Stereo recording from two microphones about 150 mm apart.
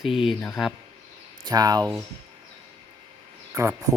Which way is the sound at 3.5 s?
20° right (ahead or behind).